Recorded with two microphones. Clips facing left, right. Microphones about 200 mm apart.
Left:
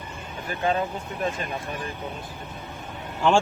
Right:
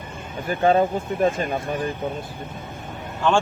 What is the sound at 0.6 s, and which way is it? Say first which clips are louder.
Speech: right 7 dB; 40° right (ahead or behind).